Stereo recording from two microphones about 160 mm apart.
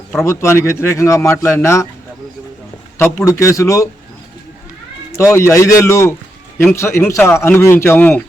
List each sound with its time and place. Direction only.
0.1 s speech: 15° left (ahead or behind)
3.0 s a man's voice: 15° left (ahead or behind)
5.1 s speech: 15° left (ahead or behind)